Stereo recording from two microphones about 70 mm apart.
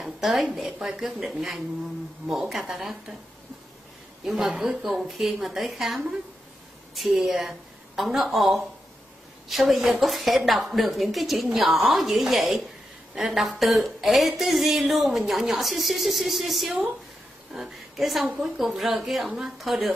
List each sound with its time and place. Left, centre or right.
0.0 s a sound: centre
0.6 s speech: centre
4.2 s a woman's voice: centre